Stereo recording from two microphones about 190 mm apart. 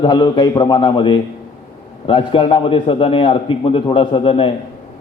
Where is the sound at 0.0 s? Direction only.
25° left (ahead or behind).